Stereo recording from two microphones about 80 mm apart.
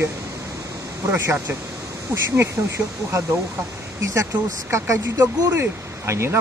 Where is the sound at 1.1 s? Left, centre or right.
Right.